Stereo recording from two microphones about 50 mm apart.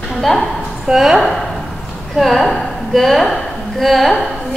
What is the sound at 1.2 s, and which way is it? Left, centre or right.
A woman's voice, centre.